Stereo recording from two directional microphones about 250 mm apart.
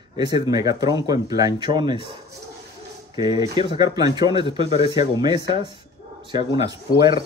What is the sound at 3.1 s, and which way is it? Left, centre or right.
Speech, centre.